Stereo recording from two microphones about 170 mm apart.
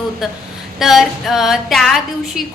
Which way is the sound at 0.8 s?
Centre (ahead or behind).